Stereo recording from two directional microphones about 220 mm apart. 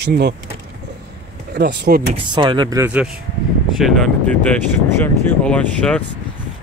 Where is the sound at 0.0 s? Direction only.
50° right (ahead or behind).